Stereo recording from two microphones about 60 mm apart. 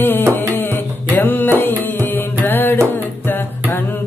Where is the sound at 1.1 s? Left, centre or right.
Left.